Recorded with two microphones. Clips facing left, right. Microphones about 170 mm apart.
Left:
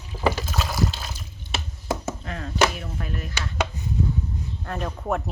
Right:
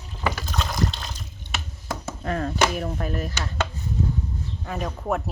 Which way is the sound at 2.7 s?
45° right (ahead or behind).